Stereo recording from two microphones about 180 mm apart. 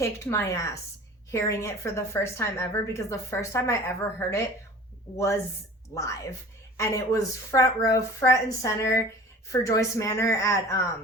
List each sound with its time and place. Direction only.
0.0 s a woman's voice: 15° left (ahead or behind)